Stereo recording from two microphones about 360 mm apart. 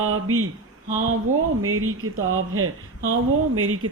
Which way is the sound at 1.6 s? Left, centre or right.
Right.